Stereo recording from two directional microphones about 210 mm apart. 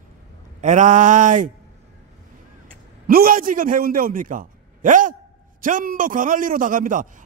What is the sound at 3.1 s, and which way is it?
A man's voice, 45° right (ahead or behind).